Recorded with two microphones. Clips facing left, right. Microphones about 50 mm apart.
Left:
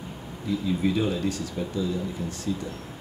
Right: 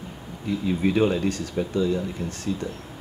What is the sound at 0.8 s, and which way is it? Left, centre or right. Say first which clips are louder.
Speech: right 5 dB; right.